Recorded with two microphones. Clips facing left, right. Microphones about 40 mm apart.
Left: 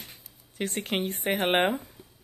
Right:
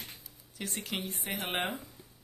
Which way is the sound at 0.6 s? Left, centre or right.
Left.